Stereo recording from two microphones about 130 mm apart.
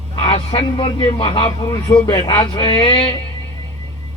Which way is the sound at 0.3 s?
40° left (ahead or behind).